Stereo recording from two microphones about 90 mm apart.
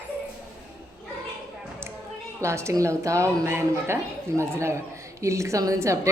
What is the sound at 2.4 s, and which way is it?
A woman's voice, 30° right (ahead or behind).